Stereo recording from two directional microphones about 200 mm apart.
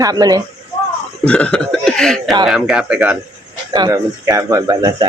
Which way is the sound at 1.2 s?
5° left (ahead or behind).